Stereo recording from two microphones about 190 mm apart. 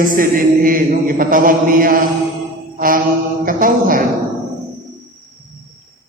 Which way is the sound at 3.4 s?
45° right (ahead or behind).